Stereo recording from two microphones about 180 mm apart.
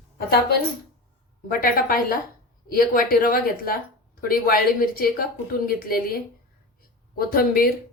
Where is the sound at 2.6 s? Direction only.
55° left (ahead or behind).